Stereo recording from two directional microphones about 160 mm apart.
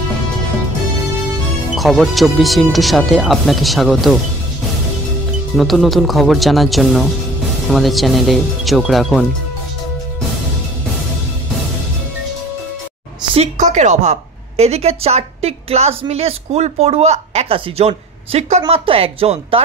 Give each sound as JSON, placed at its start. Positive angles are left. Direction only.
{"t": 1.8, "sound": "speech", "side_deg": 0}
{"t": 5.6, "sound": "speech", "side_deg": 0}
{"t": 13.2, "sound": "a sound", "side_deg": -35}
{"t": 13.6, "sound": "a woman's voice", "side_deg": -50}